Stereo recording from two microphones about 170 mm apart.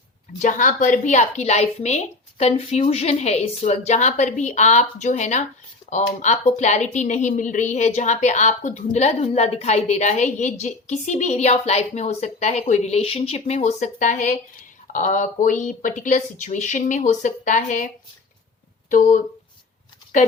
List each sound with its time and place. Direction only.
0.4 s a woman's voice: 50° left (ahead or behind)